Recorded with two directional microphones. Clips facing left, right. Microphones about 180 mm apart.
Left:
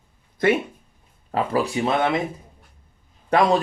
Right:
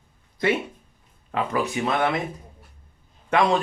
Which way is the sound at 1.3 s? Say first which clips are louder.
Left 3 dB; 35° left (ahead or behind).